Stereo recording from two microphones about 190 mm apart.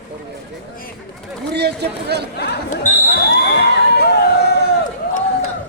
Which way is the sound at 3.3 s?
60° left (ahead or behind).